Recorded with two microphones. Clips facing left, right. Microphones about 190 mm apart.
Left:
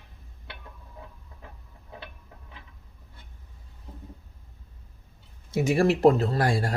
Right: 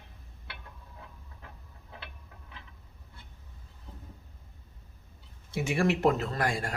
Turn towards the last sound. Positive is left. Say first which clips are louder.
# left 6 dB
turn(degrees=35)  # may be behind; listen again after turning